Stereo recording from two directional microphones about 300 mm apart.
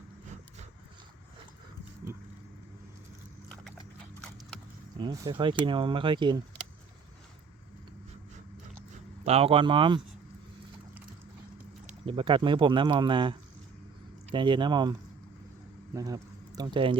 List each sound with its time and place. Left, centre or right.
4.9 s speech: centre
9.2 s speech: centre
11.9 s speech: centre
16.0 s speech: centre